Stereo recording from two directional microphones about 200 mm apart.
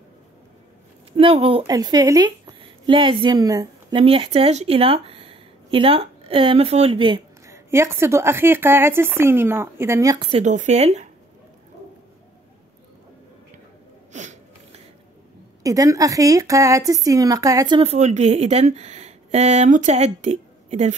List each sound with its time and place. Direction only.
1.1 s a woman's voice: 30° right (ahead or behind)
4.0 s speech: 30° right (ahead or behind)
10.2 s a woman's voice: 35° right (ahead or behind)
14.1 s sneeze: 35° right (ahead or behind)
15.6 s a woman's voice: 15° right (ahead or behind); by 20.9 s 35° right (ahead or behind)